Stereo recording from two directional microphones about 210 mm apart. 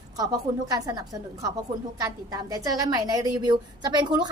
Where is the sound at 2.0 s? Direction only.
15° right (ahead or behind).